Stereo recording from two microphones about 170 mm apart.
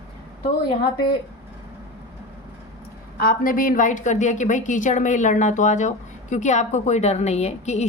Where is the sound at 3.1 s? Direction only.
55° left (ahead or behind).